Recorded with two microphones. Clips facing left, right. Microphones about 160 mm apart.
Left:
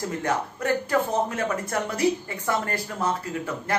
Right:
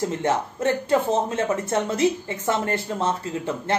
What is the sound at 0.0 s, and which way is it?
Speech, 25° right (ahead or behind).